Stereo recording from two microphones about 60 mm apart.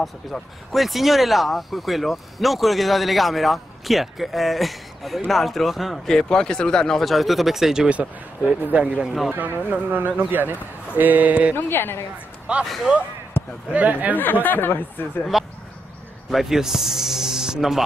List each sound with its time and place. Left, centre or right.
0.3 s speech: centre
0.7 s speech: centre
6.0 s speech: centre
7.9 s speech: right
9.3 s speech: right
11.5 s speech: left
12.5 s speech: right
13.4 s basketball bounce: left
13.7 s speech: right
14.1 s speech: left
15.3 s speech: centre